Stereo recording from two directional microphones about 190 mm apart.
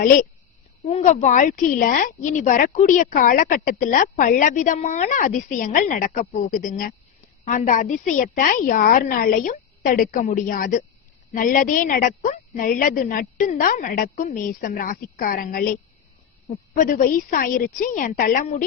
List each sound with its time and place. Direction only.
0.8 s a woman's voice: 35° left (ahead or behind); by 15.7 s 50° left (ahead or behind)
16.7 s a woman's voice: 45° left (ahead or behind)